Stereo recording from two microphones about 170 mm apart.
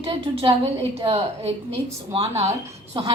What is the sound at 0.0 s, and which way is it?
A woman's voice, 35° right (ahead or behind).